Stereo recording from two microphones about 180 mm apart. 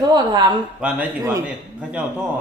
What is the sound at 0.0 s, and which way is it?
Speech, 20° right (ahead or behind).